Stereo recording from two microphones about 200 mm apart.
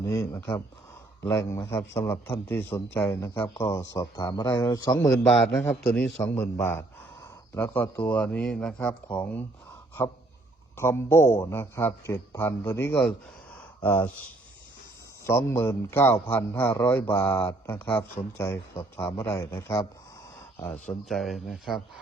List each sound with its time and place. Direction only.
0.0 s speech: 15° left (ahead or behind)
5.3 s a man's voice: centre (ahead or behind)
10.8 s speech: 10° left (ahead or behind)
13.5 s a sound: 10° left (ahead or behind)
15.3 s speech: 15° left (ahead or behind)
20.6 s a man's voice: 5° left (ahead or behind)